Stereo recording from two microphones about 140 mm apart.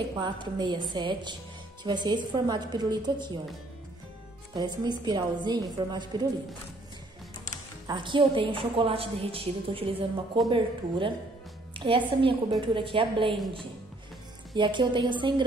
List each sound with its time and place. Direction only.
0.1 s speech: 30° right (ahead or behind)
4.6 s speech: 30° right (ahead or behind)
7.8 s speech: 35° right (ahead or behind)
14.5 s speech: 35° right (ahead or behind)